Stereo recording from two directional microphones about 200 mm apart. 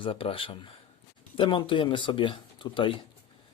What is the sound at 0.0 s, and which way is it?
Speech, 25° left (ahead or behind).